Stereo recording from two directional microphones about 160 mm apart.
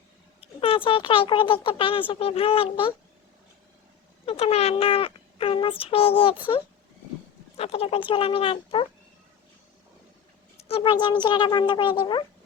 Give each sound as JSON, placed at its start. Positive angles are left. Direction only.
{"t": 0.4, "sound": "a sound", "side_deg": 35}
{"t": 0.9, "sound": "speech", "side_deg": 35}
{"t": 4.3, "sound": "speech", "side_deg": 40}
{"t": 7.5, "sound": "speech", "side_deg": 40}
{"t": 10.7, "sound": "speech", "side_deg": 35}